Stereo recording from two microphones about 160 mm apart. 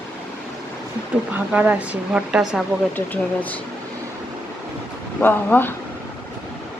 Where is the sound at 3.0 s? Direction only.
10° left (ahead or behind).